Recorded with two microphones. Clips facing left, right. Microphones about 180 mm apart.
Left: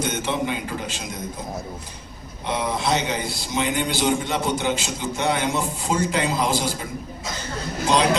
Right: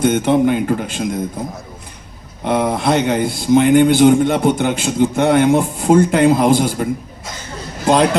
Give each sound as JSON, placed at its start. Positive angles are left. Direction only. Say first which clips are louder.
{"t": 0.0, "sound": "a man's voice", "louder": "right 11 dB", "side_deg": -55}
{"t": 2.4, "sound": "a man's voice", "louder": "right 8 dB", "side_deg": -55}